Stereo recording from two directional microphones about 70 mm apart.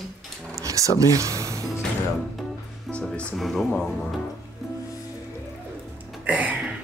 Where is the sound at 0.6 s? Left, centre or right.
Right.